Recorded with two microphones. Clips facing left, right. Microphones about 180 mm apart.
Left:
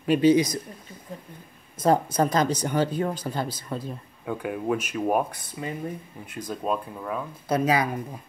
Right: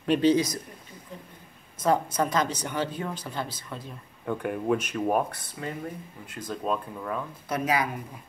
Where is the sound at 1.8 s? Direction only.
35° left (ahead or behind).